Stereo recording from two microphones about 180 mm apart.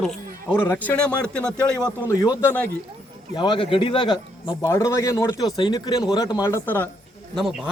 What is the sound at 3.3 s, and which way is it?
Speech, 25° left (ahead or behind).